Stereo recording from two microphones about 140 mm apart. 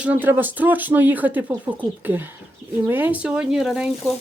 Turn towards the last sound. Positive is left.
turn(degrees=-5)  # may be behind; listen again after turning